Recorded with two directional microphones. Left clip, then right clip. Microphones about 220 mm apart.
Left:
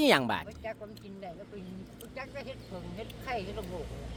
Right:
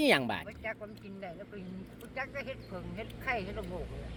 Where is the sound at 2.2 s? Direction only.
5° left (ahead or behind).